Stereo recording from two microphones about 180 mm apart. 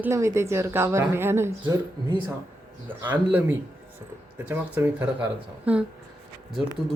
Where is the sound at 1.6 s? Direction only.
25° right (ahead or behind).